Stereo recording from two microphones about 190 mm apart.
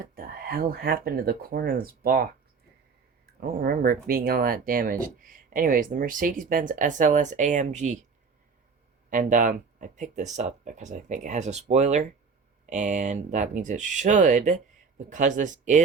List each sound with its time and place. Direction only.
0.0 s speech: 50° right (ahead or behind)
3.4 s speech: 50° right (ahead or behind)
9.0 s speech: 45° right (ahead or behind)